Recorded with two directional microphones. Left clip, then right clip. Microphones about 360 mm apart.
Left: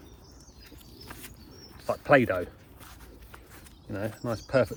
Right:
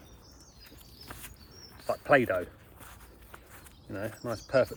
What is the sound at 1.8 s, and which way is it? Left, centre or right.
Speech, centre.